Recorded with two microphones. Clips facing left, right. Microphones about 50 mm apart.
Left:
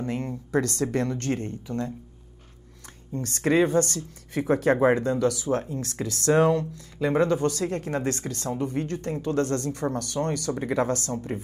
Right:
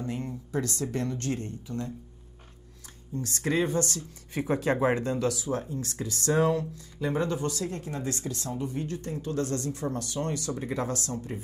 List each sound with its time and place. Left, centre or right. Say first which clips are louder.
0.0 s a woman's voice: left 4 dB; left
3.2 s speech: left 6 dB; left